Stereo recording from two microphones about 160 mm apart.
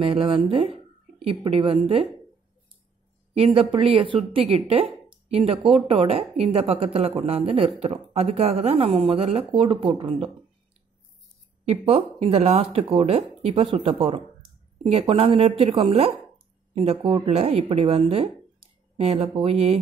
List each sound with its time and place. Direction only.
0.1 s speech: 30° right (ahead or behind)
3.3 s speech: 35° right (ahead or behind)
11.6 s speech: 40° right (ahead or behind)